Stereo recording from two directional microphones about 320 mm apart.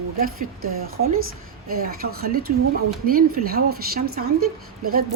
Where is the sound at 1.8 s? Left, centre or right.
Right.